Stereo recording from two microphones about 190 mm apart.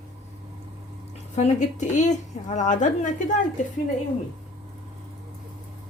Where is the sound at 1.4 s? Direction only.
40° left (ahead or behind).